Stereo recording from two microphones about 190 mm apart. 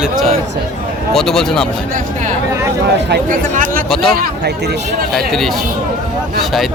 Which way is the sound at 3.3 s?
45° right (ahead or behind).